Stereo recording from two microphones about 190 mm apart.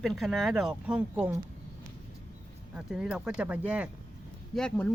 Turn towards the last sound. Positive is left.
turn(degrees=5)  # may be behind; listen again after turning